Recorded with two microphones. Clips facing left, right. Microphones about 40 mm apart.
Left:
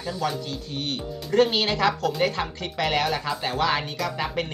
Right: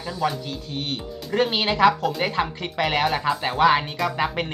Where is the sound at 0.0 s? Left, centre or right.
Centre.